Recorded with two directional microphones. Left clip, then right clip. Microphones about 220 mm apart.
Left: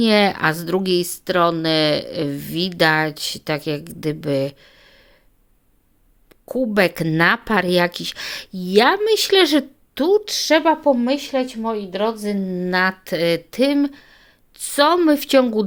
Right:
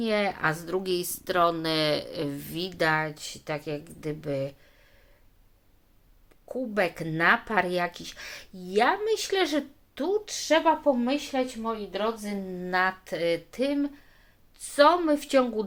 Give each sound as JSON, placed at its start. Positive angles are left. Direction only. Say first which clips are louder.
{"t": 0.0, "sound": "speech", "louder": "left 10 dB", "side_deg": 45}
{"t": 6.4, "sound": "speech", "louder": "left 10 dB", "side_deg": 45}